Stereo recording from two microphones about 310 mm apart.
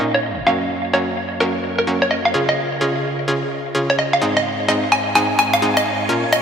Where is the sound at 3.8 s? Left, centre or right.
Centre.